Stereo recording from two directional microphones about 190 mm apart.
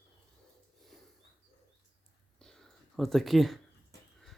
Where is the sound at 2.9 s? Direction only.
Centre (ahead or behind).